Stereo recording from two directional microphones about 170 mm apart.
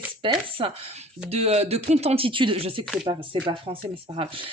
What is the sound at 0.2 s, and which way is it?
A woman's voice, 30° right (ahead or behind).